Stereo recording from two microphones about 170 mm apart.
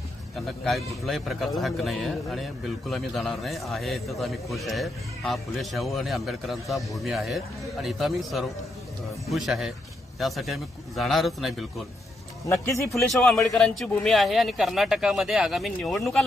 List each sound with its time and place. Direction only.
0.5 s a man's voice: centre (ahead or behind)
12.4 s a man's voice: 15° left (ahead or behind)
13.1 s a man's voice: 5° left (ahead or behind)